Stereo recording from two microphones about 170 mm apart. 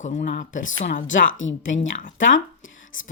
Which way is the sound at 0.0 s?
45° left (ahead or behind).